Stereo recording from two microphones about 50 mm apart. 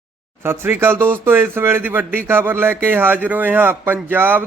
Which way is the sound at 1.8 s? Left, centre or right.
Right.